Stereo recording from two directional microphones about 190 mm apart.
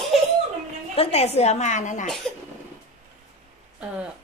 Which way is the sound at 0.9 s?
30° left (ahead or behind).